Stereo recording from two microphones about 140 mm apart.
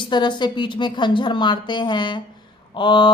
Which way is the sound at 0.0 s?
35° left (ahead or behind).